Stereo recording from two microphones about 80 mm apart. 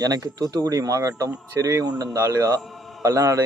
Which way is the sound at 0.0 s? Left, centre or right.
Right.